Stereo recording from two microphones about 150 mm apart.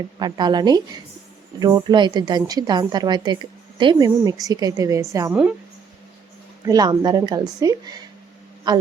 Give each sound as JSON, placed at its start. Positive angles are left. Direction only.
{"t": 0.2, "sound": "a woman's voice", "side_deg": -30}
{"t": 6.7, "sound": "a woman's voice", "side_deg": -25}